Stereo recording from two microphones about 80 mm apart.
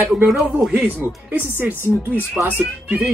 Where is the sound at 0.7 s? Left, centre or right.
Right.